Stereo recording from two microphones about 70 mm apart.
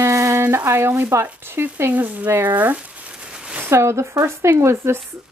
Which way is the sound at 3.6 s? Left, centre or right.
Right.